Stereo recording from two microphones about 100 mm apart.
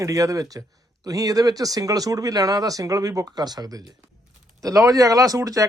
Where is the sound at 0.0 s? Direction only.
35° right (ahead or behind).